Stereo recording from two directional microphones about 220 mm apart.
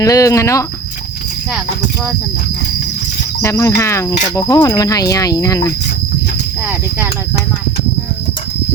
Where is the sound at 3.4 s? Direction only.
15° left (ahead or behind).